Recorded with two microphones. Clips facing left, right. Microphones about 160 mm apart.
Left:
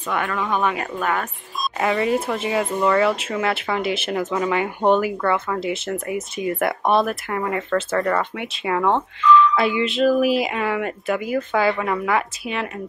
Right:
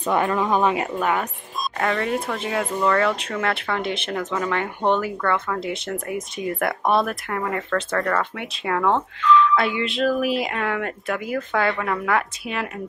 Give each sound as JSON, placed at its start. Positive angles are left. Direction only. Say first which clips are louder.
{"t": 0.0, "sound": "speech", "louder": "right 4 dB", "side_deg": -30}
{"t": 0.9, "sound": "speech", "louder": "right 1 dB", "side_deg": -15}
{"t": 1.8, "sound": "speech", "louder": "left 3 dB", "side_deg": 5}